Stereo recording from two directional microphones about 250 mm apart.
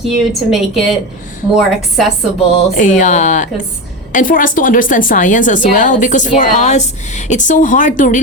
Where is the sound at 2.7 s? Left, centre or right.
Left.